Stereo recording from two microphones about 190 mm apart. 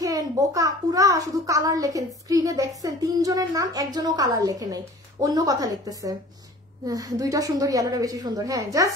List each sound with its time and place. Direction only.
0.0 s a child's voice: 20° right (ahead or behind)